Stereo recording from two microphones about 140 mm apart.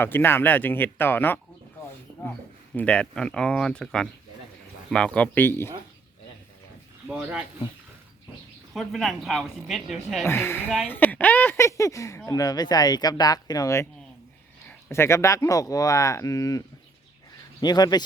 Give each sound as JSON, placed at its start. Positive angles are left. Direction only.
{"t": 0.0, "sound": "speech", "side_deg": 15}
{"t": 7.2, "sound": "speech", "side_deg": -15}
{"t": 8.7, "sound": "speech", "side_deg": 0}
{"t": 10.2, "sound": "speech", "side_deg": 15}